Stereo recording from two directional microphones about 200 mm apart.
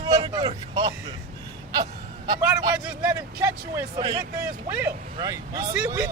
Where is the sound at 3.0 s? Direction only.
15° right (ahead or behind).